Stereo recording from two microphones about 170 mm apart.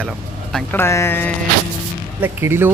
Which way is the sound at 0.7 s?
15° left (ahead or behind).